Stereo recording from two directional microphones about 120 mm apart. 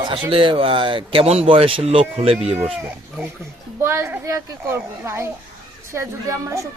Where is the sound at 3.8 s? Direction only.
20° right (ahead or behind).